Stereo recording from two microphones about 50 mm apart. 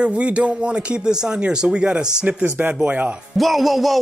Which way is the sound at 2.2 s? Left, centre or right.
Right.